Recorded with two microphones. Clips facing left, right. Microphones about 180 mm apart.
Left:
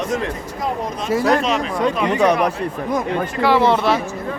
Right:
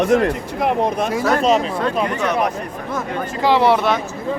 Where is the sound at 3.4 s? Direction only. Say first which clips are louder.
Right 1 dB; 15° right (ahead or behind).